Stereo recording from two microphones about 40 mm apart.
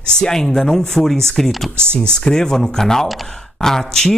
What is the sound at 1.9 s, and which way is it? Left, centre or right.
Speech, centre.